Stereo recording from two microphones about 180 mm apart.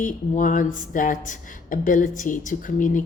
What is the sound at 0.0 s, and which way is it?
A woman's voice, 45° left (ahead or behind).